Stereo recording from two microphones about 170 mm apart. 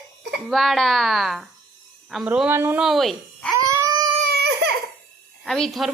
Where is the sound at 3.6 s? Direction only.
20° right (ahead or behind).